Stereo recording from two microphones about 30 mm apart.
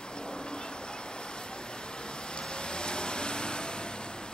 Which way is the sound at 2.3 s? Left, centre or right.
Left.